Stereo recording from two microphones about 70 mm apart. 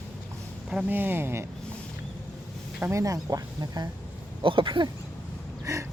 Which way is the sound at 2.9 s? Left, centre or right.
Right.